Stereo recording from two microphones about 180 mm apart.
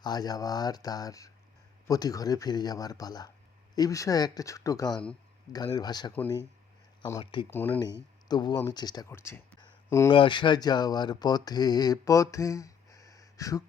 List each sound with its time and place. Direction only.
0.0 s speech: 20° left (ahead or behind)
7.5 s speech: 10° left (ahead or behind)
8.3 s speech: 25° left (ahead or behind)
10.1 s speech: 25° left (ahead or behind)